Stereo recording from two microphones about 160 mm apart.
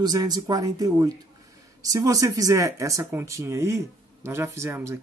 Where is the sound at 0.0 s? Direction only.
25° right (ahead or behind).